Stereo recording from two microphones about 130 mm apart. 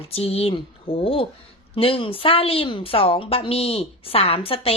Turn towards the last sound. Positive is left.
turn(degrees=45)  # may be behind; listen again after turning